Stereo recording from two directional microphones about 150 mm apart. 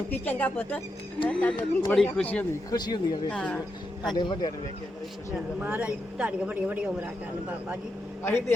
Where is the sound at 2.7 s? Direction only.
30° left (ahead or behind).